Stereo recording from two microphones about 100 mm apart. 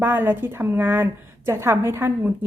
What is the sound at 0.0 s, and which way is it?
A woman's voice, 20° right (ahead or behind).